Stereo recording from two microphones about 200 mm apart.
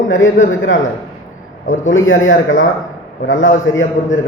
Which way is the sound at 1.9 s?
70° left (ahead or behind).